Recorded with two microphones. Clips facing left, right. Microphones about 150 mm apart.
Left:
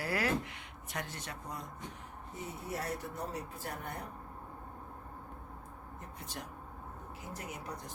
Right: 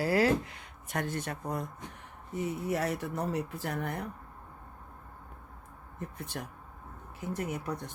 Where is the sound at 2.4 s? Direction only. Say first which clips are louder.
Right 8 dB; 90° right.